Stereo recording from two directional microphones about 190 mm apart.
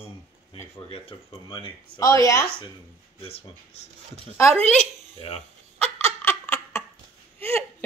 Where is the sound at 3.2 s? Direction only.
30° left (ahead or behind).